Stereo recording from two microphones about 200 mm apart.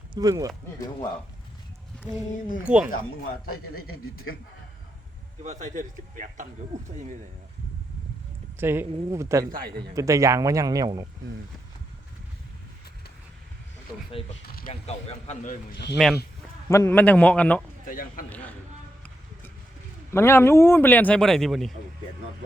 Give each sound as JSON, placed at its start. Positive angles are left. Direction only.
{"t": 0.1, "sound": "speech", "side_deg": -20}
{"t": 2.6, "sound": "speech", "side_deg": -5}
{"t": 5.4, "sound": "speech", "side_deg": -35}
{"t": 8.5, "sound": "speech", "side_deg": -10}
{"t": 14.1, "sound": "a man's voice", "side_deg": 30}
{"t": 16.0, "sound": "speech", "side_deg": 0}
{"t": 16.6, "sound": "speech", "side_deg": 15}
{"t": 17.8, "sound": "a man's voice", "side_deg": 45}
{"t": 18.3, "sound": "speech", "side_deg": 5}
{"t": 20.1, "sound": "speech", "side_deg": 10}